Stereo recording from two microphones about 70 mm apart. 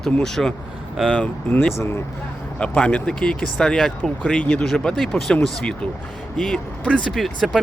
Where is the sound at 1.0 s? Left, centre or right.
Centre.